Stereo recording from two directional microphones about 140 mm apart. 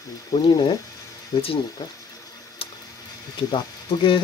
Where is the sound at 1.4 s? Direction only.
40° left (ahead or behind).